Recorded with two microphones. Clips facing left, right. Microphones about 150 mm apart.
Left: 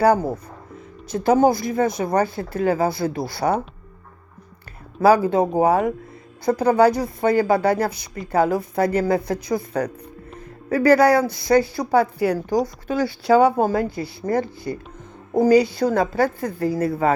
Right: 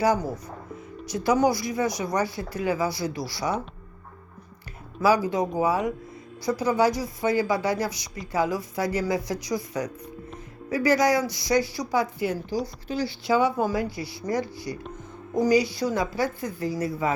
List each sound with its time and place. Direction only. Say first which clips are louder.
0.0 s a woman's voice: left 6 dB; 60° left (ahead or behind)
4.9 s a woman's voice: left 6 dB; 60° left (ahead or behind)
12.6 s a woman's voice: left 6 dB; 50° left (ahead or behind)